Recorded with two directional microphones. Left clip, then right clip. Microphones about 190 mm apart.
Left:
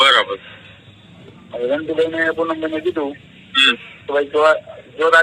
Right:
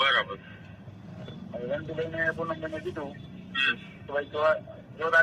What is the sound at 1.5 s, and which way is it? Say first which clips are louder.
A man's voice: left 14 dB; 40° left (ahead or behind).